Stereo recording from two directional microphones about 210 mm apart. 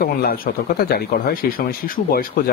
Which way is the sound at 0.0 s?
45° left (ahead or behind).